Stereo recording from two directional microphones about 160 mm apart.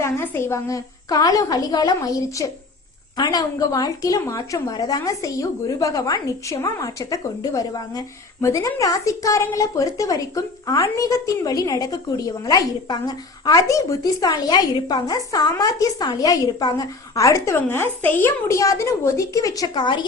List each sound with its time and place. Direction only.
0.0 s a woman's voice: 15° left (ahead or behind)